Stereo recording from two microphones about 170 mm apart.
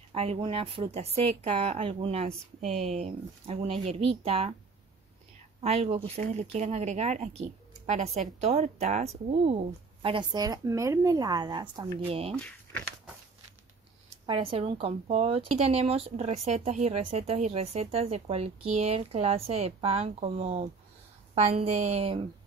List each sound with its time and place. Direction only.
0.1 s speech: 35° right (ahead or behind)
5.6 s speech: 40° right (ahead or behind)
10.0 s speech: 25° right (ahead or behind)
12.3 s a sound: 10° left (ahead or behind)
14.2 s speech: 30° right (ahead or behind)